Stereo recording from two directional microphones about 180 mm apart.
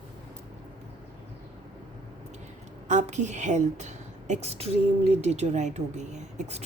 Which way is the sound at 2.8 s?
40° right (ahead or behind).